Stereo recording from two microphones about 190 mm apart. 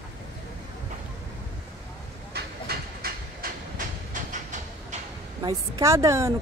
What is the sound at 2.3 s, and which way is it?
Train, 55° right (ahead or behind).